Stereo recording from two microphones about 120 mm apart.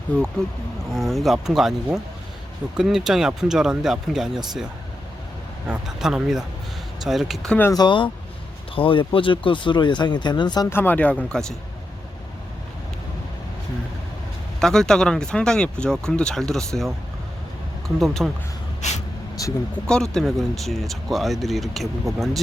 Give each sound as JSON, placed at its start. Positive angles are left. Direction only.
{"t": 0.4, "sound": "speech", "side_deg": 5}
{"t": 2.7, "sound": "speech", "side_deg": -5}
{"t": 5.6, "sound": "speech", "side_deg": -5}
{"t": 7.7, "sound": "speech", "side_deg": 40}
{"t": 10.7, "sound": "speech", "side_deg": 15}
{"t": 14.6, "sound": "speech", "side_deg": 5}
{"t": 18.0, "sound": "speech", "side_deg": 0}
{"t": 18.8, "sound": "speech", "side_deg": 75}
{"t": 19.7, "sound": "speech", "side_deg": 5}